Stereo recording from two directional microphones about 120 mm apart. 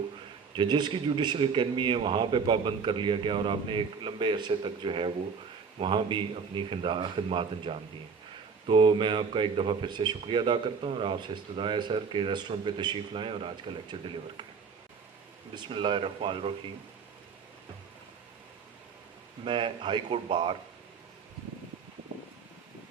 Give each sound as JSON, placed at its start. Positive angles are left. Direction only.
{"t": 0.5, "sound": "a man's voice", "side_deg": -40}
{"t": 15.5, "sound": "a man's voice", "side_deg": -40}
{"t": 19.5, "sound": "a man's voice", "side_deg": -40}